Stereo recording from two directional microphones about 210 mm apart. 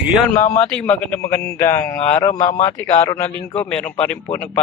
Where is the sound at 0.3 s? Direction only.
10° left (ahead or behind).